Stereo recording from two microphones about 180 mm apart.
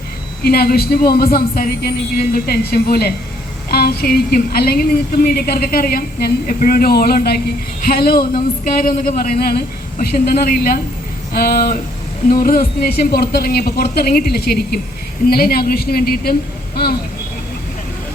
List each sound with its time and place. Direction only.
0.4 s a woman's voice: 60° left (ahead or behind)